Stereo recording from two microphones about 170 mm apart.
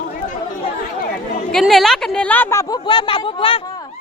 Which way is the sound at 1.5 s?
Centre (ahead or behind).